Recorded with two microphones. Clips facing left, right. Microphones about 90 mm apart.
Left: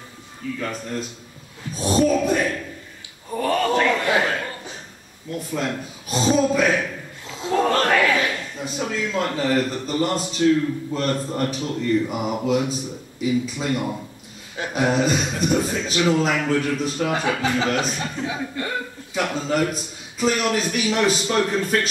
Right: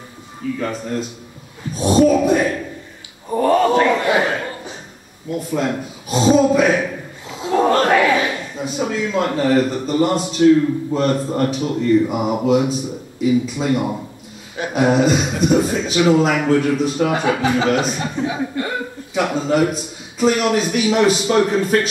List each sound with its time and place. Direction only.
0.6 s a man's voice: 10° right (ahead or behind)
5.3 s a sound: 10° right (ahead or behind)
8.6 s a man's voice: 10° right (ahead or behind)